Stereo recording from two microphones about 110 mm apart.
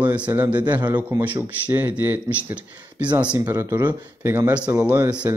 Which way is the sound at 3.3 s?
25° right (ahead or behind).